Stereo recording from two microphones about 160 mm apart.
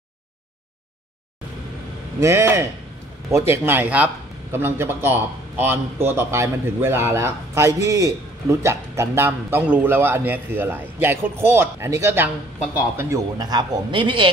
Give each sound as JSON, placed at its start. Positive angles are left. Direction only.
{"t": 2.1, "sound": "a man's voice", "side_deg": -15}